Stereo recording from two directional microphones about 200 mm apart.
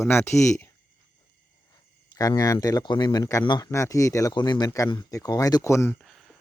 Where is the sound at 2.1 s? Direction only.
20° left (ahead or behind).